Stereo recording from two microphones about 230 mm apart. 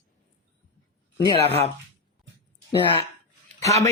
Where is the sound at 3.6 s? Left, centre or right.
Centre.